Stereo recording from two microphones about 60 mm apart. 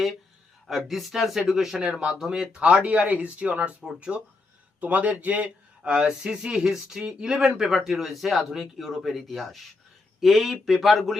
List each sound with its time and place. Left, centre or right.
0.7 s speech: centre